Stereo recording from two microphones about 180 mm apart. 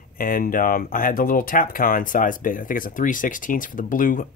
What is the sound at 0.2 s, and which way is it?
Speech, 50° left (ahead or behind).